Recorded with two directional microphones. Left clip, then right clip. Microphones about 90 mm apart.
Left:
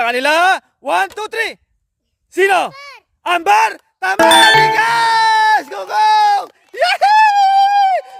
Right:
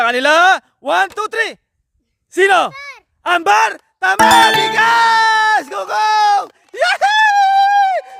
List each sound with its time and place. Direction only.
0.0 s speech: 35° right (ahead or behind)
4.0 s music: 40° right (ahead or behind)
4.6 s speech: 40° right (ahead or behind)
6.7 s a sound: 30° right (ahead or behind)